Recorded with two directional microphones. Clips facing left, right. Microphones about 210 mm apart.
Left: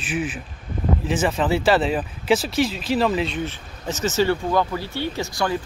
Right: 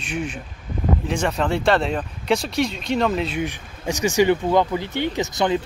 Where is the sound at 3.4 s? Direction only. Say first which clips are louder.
Right 2 dB; 15° right (ahead or behind).